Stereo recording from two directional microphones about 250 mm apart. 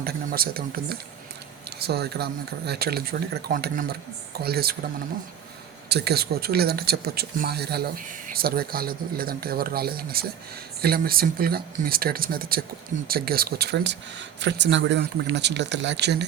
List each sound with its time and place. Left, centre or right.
0.0 s speech: right
5.9 s speech: right